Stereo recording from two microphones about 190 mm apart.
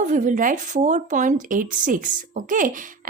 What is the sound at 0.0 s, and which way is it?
Speech, 40° right (ahead or behind).